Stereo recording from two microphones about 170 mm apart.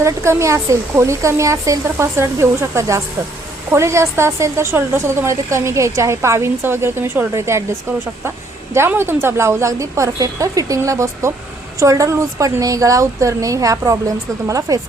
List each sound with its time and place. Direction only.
0.0 s a woman's voice: 15° right (ahead or behind)